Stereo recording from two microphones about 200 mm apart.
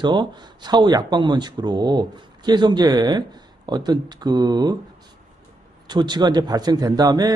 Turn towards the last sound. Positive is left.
turn(degrees=-20)  # may be behind; listen again after turning